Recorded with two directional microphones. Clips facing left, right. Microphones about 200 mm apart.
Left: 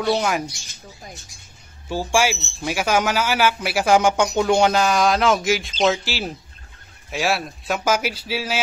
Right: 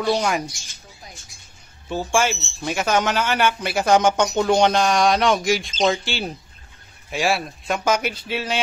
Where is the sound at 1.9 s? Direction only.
10° left (ahead or behind).